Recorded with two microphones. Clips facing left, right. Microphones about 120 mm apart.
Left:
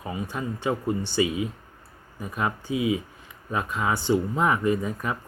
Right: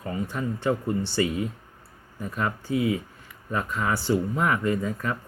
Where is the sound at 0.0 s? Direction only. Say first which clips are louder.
Right 1 dB; 15° left (ahead or behind).